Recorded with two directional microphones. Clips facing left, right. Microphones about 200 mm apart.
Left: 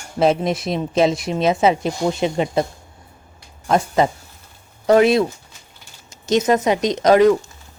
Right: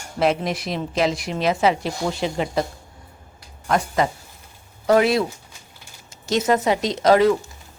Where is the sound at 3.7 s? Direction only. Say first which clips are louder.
Left 4 dB; 25° left (ahead or behind).